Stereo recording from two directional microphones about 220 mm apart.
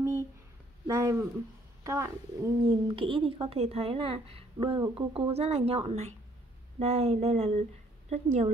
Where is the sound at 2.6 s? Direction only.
25° right (ahead or behind).